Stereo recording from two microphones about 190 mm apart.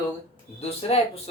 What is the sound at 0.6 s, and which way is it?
Speech, 30° left (ahead or behind).